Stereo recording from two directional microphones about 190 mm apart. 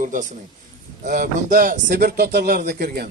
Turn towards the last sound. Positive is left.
turn(degrees=-55)  # may be behind; listen again after turning